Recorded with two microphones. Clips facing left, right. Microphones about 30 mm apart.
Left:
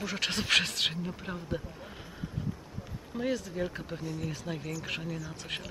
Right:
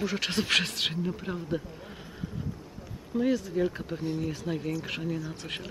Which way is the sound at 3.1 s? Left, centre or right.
Centre.